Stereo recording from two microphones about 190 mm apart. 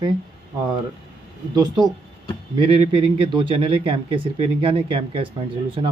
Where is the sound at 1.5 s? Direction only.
20° right (ahead or behind).